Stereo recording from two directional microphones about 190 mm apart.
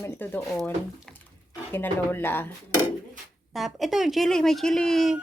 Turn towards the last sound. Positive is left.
turn(degrees=0)  # may be behind; listen again after turning